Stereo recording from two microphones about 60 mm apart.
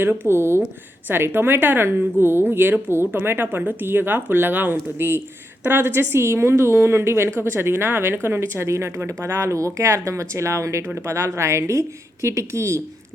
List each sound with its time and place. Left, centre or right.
0.0 s a woman's voice: right